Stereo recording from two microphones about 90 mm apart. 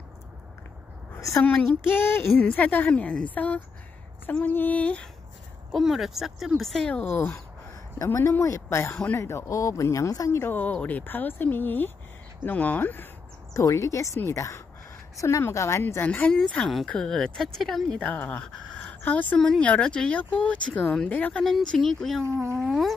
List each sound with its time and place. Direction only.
1.9 s speech: 25° left (ahead or behind)
5.7 s speech: 5° right (ahead or behind)
6.9 s speech: 20° left (ahead or behind)
8.0 s speech: 35° left (ahead or behind)
10.5 s speech: 15° left (ahead or behind)
13.5 s speech: 35° left (ahead or behind)
15.8 s speech: 20° left (ahead or behind)
16.3 s speech: 5° left (ahead or behind)
18.1 s speech: 20° left (ahead or behind)
21.5 s speech: centre (ahead or behind)